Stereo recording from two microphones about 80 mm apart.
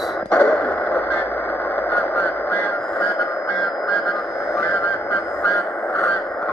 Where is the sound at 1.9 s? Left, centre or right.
Left.